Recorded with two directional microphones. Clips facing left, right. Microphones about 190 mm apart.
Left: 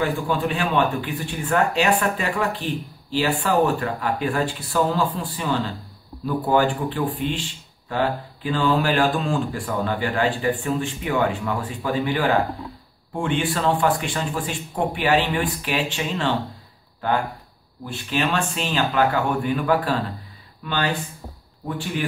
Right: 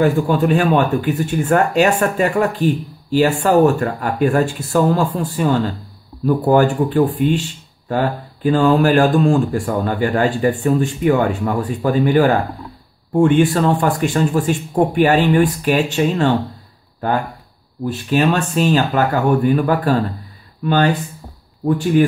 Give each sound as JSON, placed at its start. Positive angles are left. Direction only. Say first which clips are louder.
{"t": 0.0, "sound": "speech", "louder": "right 8 dB", "side_deg": -45}
{"t": 17.8, "sound": "speech", "louder": "right 8 dB", "side_deg": -40}